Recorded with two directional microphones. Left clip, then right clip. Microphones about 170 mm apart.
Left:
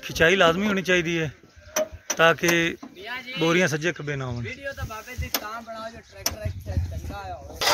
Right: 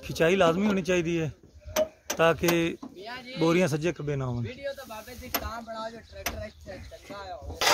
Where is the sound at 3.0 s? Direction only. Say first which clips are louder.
Left 8 dB; 80° right.